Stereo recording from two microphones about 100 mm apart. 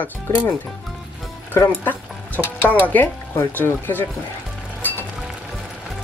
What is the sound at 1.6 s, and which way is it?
Speech, 15° left (ahead or behind).